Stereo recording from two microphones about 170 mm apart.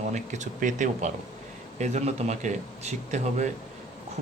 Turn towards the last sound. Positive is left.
turn(degrees=-45)  # may be behind; listen again after turning